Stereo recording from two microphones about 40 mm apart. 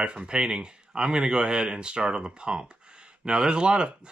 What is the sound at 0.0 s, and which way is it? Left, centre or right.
A man's voice, right.